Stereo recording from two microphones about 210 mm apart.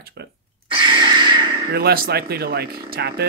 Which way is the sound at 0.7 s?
20° right (ahead or behind).